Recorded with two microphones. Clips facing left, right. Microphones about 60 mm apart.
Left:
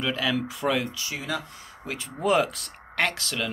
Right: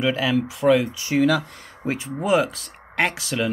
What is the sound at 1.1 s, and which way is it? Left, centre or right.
Speech, right.